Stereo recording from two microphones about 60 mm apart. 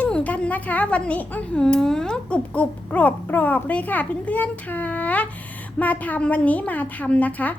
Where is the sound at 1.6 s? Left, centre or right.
Centre.